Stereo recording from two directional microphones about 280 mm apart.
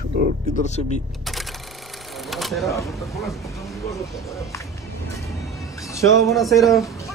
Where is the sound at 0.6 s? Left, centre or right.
Left.